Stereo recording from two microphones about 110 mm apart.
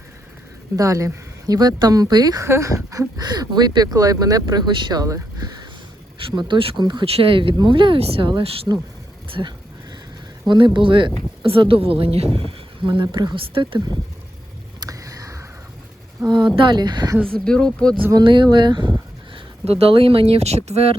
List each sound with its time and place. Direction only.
0.8 s speech: 30° right (ahead or behind)
6.1 s speech: 50° right (ahead or behind)
7.0 s speech: 60° right (ahead or behind)
8.0 s speech: 60° right (ahead or behind)
8.3 s speech: 45° right (ahead or behind)
10.5 s speech: 45° right (ahead or behind)
14.8 s a sound: 30° right (ahead or behind)
16.2 s speech: 45° right (ahead or behind)
17.3 s speech: 5° left (ahead or behind)
18.2 s speech: 50° right (ahead or behind)
19.3 s speech: 65° right (ahead or behind)